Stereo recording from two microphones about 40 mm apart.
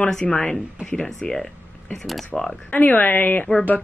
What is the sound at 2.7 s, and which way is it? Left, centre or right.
Speech, left.